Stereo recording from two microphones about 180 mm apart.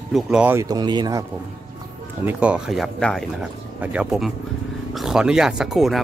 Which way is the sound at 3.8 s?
5° right (ahead or behind).